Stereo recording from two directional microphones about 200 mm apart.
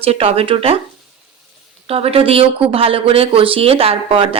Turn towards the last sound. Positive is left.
turn(degrees=-30)  # may be behind; listen again after turning